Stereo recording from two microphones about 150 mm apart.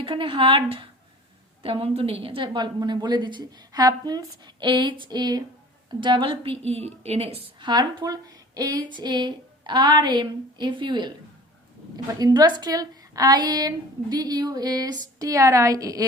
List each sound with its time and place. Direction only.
0.0 s a woman's voice: 35° right (ahead or behind)
12.2 s a woman's voice: 25° right (ahead or behind)